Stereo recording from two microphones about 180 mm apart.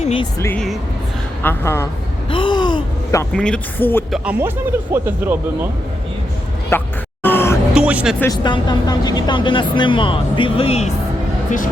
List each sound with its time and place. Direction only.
0.0 s speech: 35° left (ahead or behind)
0.3 s speech: 15° left (ahead or behind)
2.3 s gasp: 25° left (ahead or behind)
3.3 s speech: 5° left (ahead or behind)
4.1 s speech: 10° right (ahead or behind)
6.7 s a sound: 10° left (ahead or behind)
7.7 s music: 5° right (ahead or behind)
8.2 s speech: 25° left (ahead or behind)